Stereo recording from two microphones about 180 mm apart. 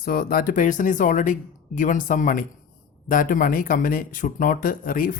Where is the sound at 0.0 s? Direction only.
55° left (ahead or behind).